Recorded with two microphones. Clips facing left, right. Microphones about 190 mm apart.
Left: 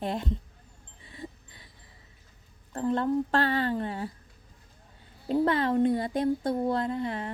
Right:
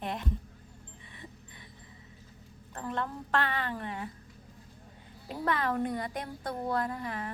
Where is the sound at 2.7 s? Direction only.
30° left (ahead or behind).